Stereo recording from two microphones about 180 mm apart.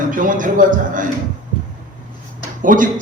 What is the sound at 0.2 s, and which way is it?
Speech, 45° right (ahead or behind).